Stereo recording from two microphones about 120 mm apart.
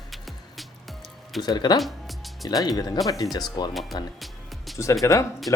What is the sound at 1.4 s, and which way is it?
Speech, 35° left (ahead or behind).